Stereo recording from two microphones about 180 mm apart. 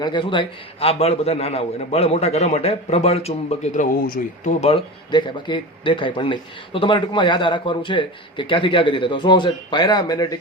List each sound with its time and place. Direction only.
0.0 s a man's voice: 25° left (ahead or behind); by 4.5 s 55° left (ahead or behind)
4.6 s speech: 30° left (ahead or behind)